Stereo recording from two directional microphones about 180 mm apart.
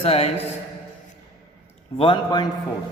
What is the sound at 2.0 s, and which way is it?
Speech, 30° left (ahead or behind).